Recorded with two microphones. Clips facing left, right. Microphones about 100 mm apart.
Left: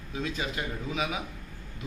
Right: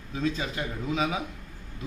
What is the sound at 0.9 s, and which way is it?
Speech, 30° right (ahead or behind).